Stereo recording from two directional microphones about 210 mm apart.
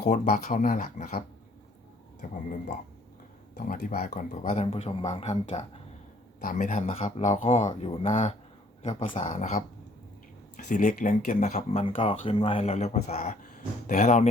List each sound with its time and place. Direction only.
0.0 s speech: 35° left (ahead or behind)
2.2 s speech: 40° left (ahead or behind)
3.5 s speech: 35° left (ahead or behind)